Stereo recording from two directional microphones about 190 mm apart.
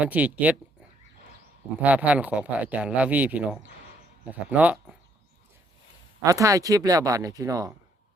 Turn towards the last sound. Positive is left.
turn(degrees=-20)  # may be behind; listen again after turning